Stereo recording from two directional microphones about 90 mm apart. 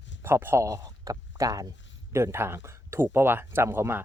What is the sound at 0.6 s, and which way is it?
Speech, 40° right (ahead or behind).